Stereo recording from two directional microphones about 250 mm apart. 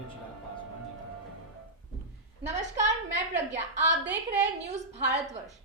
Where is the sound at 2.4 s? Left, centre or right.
Right.